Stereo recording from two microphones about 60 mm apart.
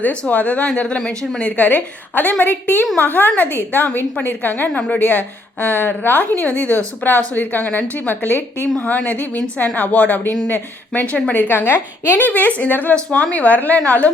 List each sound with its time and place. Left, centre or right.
0.0 s a woman's voice: left
8.8 s a woman's voice: left
11.4 s a woman's voice: left
12.9 s a woman's voice: centre